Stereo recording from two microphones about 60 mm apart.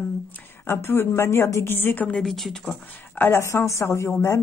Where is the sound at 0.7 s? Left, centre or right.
Left.